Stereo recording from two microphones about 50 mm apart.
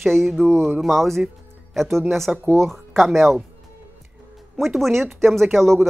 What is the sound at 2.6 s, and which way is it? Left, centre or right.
Speech, centre.